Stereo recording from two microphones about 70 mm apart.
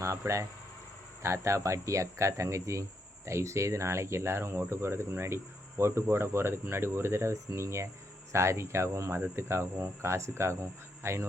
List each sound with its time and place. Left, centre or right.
0.2 s speech: right